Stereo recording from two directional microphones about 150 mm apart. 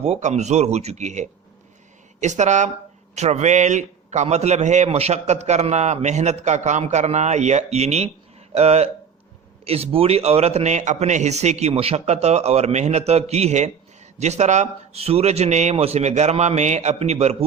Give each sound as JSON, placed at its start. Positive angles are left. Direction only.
{"t": 0.0, "sound": "a man's voice", "side_deg": -50}